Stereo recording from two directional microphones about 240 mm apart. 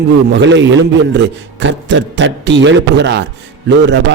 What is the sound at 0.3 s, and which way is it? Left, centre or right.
A man's voice, right.